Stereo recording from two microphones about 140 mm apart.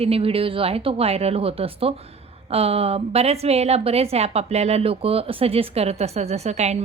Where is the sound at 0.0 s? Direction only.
45° right (ahead or behind).